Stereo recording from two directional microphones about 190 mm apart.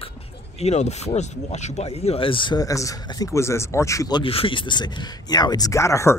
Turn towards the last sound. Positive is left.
turn(degrees=15)  # may be behind; listen again after turning